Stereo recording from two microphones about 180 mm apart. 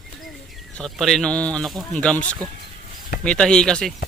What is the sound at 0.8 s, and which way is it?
Speech, centre (ahead or behind).